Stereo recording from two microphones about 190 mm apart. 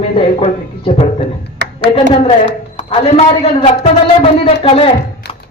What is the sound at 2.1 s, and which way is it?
A man's voice, 30° left (ahead or behind).